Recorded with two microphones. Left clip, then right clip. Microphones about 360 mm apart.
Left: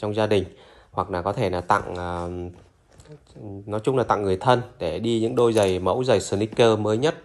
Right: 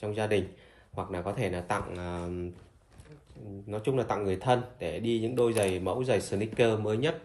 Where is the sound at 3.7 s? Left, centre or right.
Centre.